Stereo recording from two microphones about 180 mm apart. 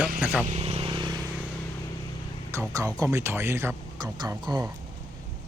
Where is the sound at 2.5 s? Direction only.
15° right (ahead or behind).